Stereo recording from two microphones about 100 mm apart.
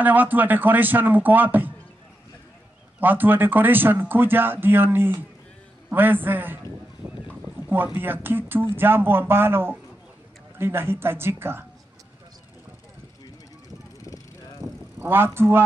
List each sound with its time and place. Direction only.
0.0 s speech: 15° right (ahead or behind)
3.0 s speech: 20° right (ahead or behind)
7.0 s a sound: 15° right (ahead or behind)
7.7 s speech: 20° right (ahead or behind)
13.9 s vehicle: 35° left (ahead or behind)
15.0 s speech: 20° right (ahead or behind)